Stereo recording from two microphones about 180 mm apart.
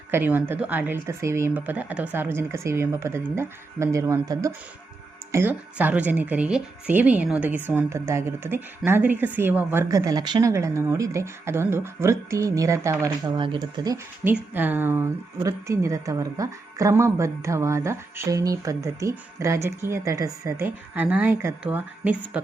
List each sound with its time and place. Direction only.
0.1 s speech: 10° right (ahead or behind)